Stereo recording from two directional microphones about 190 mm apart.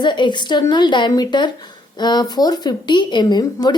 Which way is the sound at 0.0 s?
25° left (ahead or behind).